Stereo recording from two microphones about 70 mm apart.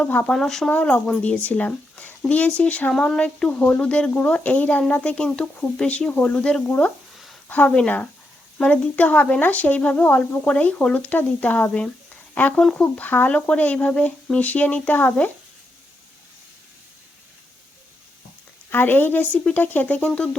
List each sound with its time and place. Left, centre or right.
0.3 s speech: centre
0.7 s speech: left
5.1 s speech: centre
7.4 s a sound: left
7.7 s speech: centre
18.7 s speech: left